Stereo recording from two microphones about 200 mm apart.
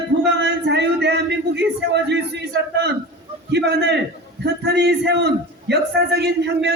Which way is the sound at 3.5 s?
55° right (ahead or behind).